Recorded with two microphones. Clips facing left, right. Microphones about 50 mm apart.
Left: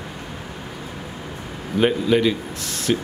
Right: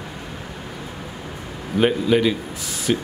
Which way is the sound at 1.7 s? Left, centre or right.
Centre.